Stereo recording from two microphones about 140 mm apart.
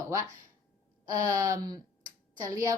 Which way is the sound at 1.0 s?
25° right (ahead or behind).